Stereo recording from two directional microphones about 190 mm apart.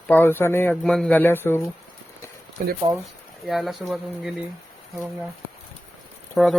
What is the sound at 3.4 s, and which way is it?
Speech, centre (ahead or behind).